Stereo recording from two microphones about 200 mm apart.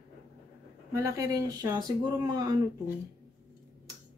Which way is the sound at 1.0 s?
15° right (ahead or behind).